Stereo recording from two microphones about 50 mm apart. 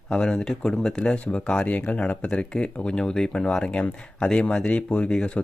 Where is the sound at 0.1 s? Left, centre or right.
Centre.